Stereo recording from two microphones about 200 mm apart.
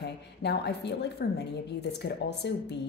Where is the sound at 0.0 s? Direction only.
55° left (ahead or behind).